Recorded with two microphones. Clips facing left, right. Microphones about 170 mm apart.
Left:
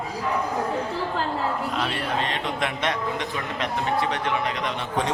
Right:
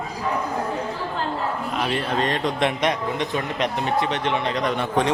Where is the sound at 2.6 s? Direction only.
20° right (ahead or behind).